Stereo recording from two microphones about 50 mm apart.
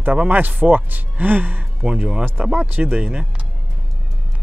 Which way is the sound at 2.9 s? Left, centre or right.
Right.